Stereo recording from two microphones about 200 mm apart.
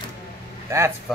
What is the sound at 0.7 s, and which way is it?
Speech, 15° right (ahead or behind).